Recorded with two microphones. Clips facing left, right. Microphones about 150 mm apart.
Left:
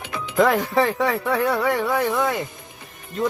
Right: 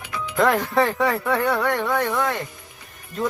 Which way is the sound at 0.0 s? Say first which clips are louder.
Even; 25° left (ahead or behind).